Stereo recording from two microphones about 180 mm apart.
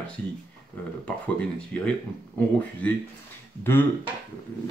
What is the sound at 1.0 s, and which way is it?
Speech, 5° left (ahead or behind).